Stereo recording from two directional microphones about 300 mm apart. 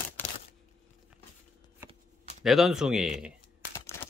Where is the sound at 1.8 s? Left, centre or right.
Centre.